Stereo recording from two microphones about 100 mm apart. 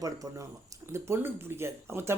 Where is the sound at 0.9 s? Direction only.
25° right (ahead or behind).